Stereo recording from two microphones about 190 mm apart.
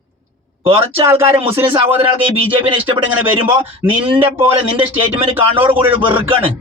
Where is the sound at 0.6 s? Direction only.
30° right (ahead or behind).